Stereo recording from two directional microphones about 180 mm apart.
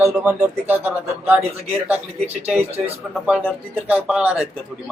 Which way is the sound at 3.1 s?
5° right (ahead or behind).